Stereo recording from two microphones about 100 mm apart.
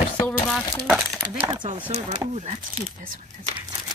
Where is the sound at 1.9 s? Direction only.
90° right.